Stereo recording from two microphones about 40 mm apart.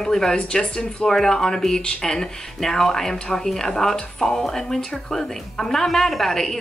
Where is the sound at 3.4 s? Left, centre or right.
Centre.